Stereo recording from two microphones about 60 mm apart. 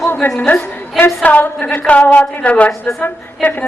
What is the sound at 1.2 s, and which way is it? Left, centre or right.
A woman's voice, left.